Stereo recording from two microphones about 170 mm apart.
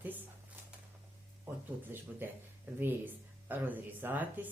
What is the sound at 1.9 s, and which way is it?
Speech, 10° right (ahead or behind).